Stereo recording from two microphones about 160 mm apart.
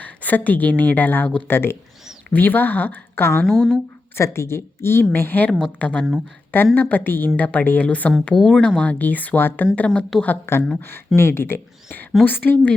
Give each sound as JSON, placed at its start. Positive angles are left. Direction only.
{"t": 0.0, "sound": "a woman's voice", "side_deg": 10}
{"t": 3.4, "sound": "a woman's voice", "side_deg": 0}
{"t": 4.1, "sound": "a woman's voice", "side_deg": 15}